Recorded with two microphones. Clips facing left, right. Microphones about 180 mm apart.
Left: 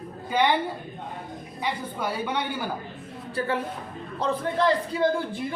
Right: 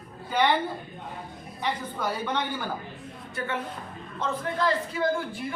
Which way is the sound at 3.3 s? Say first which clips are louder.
Left 5 dB; 35° left (ahead or behind).